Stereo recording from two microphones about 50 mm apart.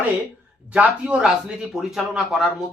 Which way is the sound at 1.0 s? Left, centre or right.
Centre.